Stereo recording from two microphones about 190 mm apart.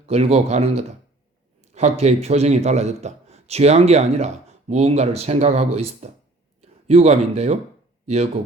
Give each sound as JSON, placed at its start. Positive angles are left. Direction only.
{"t": 0.1, "sound": "a man's voice", "side_deg": -35}